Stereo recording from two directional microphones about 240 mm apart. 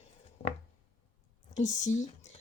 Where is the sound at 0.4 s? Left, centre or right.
Left.